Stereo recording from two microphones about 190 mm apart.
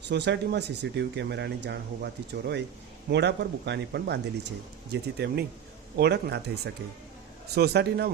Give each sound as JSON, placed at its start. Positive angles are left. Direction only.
{"t": 0.0, "sound": "speech", "side_deg": -65}
{"t": 7.5, "sound": "speech", "side_deg": -60}